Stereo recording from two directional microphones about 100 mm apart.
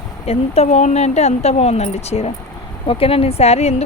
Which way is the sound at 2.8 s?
75° left (ahead or behind).